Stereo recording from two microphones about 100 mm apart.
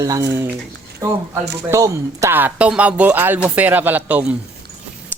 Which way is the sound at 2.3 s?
20° right (ahead or behind).